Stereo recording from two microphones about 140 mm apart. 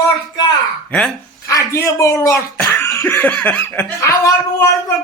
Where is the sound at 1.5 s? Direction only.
20° left (ahead or behind).